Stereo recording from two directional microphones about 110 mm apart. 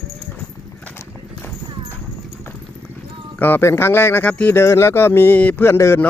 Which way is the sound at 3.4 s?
20° left (ahead or behind).